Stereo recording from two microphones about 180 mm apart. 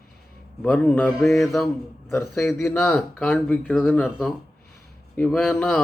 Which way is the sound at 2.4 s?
15° left (ahead or behind).